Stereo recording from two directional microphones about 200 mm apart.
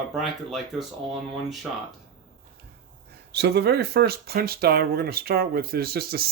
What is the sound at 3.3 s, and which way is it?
Speech, 55° right (ahead or behind).